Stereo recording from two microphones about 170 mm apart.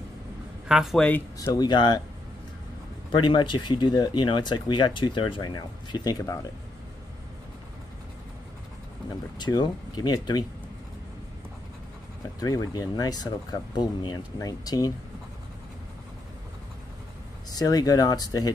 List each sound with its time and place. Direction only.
0.7 s speech: centre (ahead or behind)
1.4 s speech: 20° left (ahead or behind)
3.1 s speech: 25° left (ahead or behind)
9.4 s speech: 25° left (ahead or behind)
12.4 s speech: 20° left (ahead or behind)
17.5 s speech: 20° left (ahead or behind)